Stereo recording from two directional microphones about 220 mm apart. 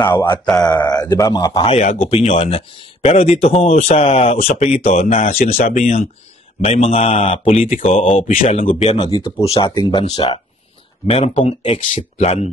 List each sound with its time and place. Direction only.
0.0 s speech: 10° left (ahead or behind)
0.7 s speech: 20° left (ahead or behind)
1.7 s speech: 30° left (ahead or behind)
5.2 s speech: 40° left (ahead or behind)